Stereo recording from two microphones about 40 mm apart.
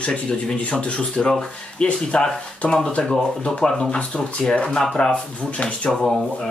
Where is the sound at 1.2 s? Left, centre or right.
Centre.